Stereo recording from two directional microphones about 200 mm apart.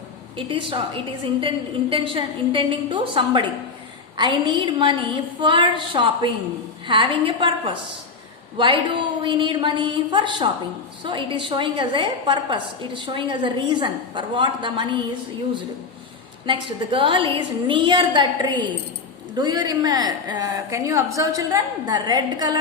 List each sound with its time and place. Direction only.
0.3 s a woman's voice: 25° right (ahead or behind)
16.5 s a woman's voice: 25° right (ahead or behind)